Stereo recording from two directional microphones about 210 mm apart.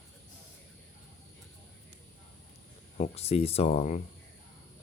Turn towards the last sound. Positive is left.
turn(degrees=30)  # may be behind; listen again after turning